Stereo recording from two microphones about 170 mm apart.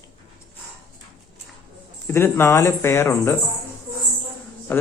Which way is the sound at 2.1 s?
15° left (ahead or behind).